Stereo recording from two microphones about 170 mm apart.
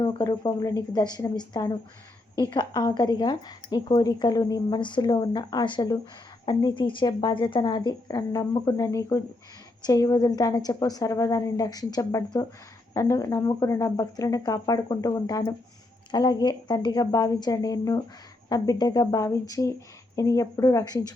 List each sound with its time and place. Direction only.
0.0 s speech: 30° left (ahead or behind)